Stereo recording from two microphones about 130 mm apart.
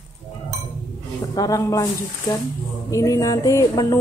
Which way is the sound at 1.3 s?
25° left (ahead or behind).